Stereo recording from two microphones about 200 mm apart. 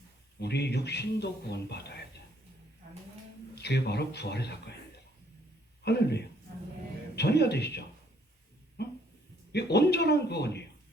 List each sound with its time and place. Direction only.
0.3 s a man's voice: 55° left (ahead or behind)
3.5 s a man's voice: 55° left (ahead or behind)
5.8 s a man's voice: 55° left (ahead or behind)
8.8 s a sound: 55° left (ahead or behind)
9.5 s a man's voice: 55° left (ahead or behind)